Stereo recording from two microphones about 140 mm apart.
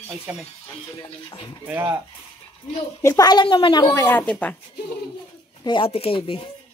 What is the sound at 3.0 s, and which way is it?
Speech, 25° left (ahead or behind).